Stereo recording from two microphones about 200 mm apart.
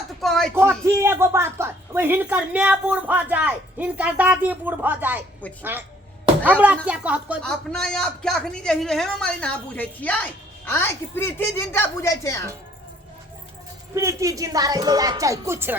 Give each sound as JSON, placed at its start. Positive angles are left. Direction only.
{"t": 0.2, "sound": "a sound", "side_deg": 0}
{"t": 0.5, "sound": "a woman's voice", "side_deg": -10}
{"t": 6.4, "sound": "a woman's voice", "side_deg": -10}
{"t": 7.4, "sound": "a man's voice", "side_deg": 5}
{"t": 13.9, "sound": "a woman's voice", "side_deg": -15}